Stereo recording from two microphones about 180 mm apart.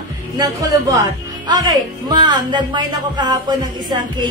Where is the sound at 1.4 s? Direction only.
20° right (ahead or behind).